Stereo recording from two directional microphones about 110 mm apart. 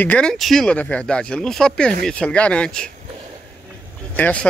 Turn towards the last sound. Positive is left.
turn(degrees=15)  # may be behind; listen again after turning